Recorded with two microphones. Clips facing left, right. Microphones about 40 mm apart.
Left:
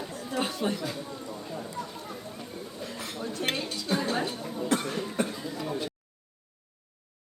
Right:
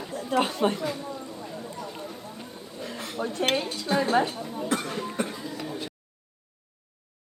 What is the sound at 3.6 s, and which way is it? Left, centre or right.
Dishes, right.